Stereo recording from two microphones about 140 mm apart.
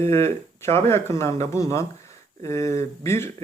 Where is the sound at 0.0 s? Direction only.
20° left (ahead or behind).